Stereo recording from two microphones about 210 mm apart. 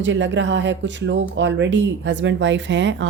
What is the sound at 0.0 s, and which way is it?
Speech, 60° right (ahead or behind).